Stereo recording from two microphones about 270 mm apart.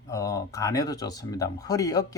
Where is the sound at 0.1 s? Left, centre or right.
Centre.